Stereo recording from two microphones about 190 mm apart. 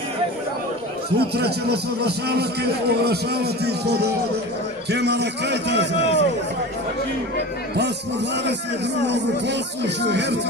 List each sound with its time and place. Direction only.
1.1 s a man's voice: 60° right (ahead or behind)
9.0 s a man's voice: 65° right (ahead or behind)